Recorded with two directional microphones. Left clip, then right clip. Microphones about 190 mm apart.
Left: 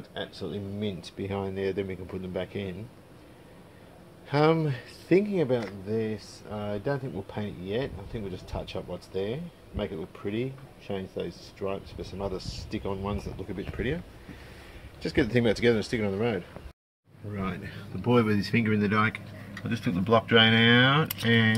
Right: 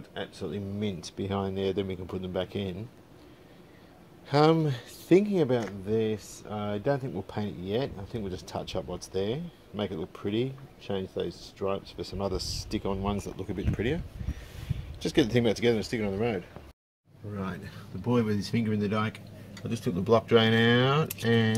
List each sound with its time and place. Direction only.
0.1 s speech: 25° right (ahead or behind); by 2.8 s 45° right (ahead or behind)
4.3 s speech: 40° right (ahead or behind)
15.0 s speech: 45° right (ahead or behind)
15.4 s speech: 5° right (ahead or behind)
18.0 s speech: 15° right (ahead or behind)
19.8 s speech: 30° right (ahead or behind)